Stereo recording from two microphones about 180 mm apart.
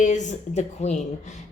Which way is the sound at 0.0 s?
40° left (ahead or behind).